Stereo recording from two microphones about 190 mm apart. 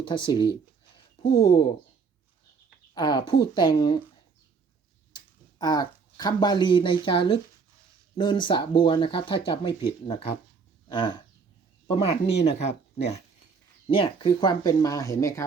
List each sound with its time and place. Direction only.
0.0 s speech: 25° left (ahead or behind)
2.9 s speech: 20° left (ahead or behind)
5.1 s speech: 20° left (ahead or behind)
10.8 s a sound: 25° left (ahead or behind)
11.9 s speech: 30° left (ahead or behind)
12.3 s speech: 65° left (ahead or behind)
13.8 s speech: 30° left (ahead or behind)